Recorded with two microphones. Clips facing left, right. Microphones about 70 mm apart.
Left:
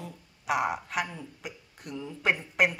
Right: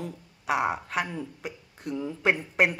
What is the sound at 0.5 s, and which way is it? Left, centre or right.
Speech, right.